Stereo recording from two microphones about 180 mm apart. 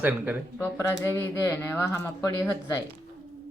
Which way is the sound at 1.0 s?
10° left (ahead or behind).